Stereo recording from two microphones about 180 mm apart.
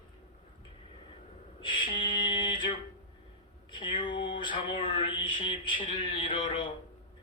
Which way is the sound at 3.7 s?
25° left (ahead or behind).